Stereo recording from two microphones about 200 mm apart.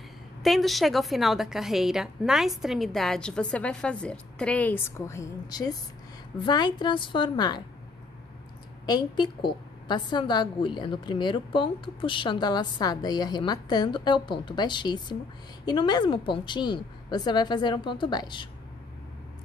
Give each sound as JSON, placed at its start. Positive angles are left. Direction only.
{"t": 0.4, "sound": "a woman's voice", "side_deg": 0}
{"t": 8.8, "sound": "a woman's voice", "side_deg": 20}